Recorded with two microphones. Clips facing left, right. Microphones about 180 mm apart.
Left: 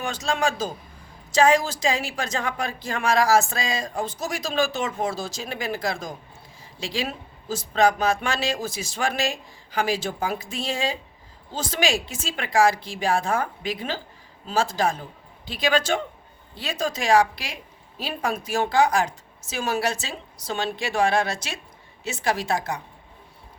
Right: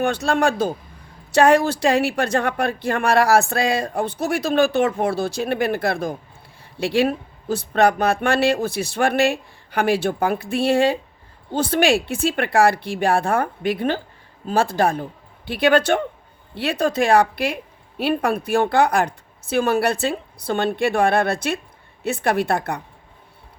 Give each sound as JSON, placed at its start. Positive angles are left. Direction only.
{"t": 0.0, "sound": "a woman's voice", "side_deg": -60}